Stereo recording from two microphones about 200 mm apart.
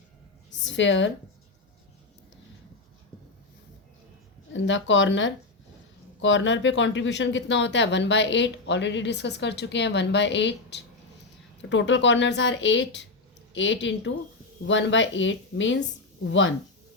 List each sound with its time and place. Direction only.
0.6 s a woman's voice: 70° left (ahead or behind)
4.5 s speech: 65° left (ahead or behind)